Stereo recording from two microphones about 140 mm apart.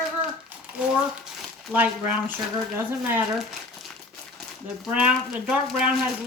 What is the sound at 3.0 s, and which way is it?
Speech, 10° right (ahead or behind).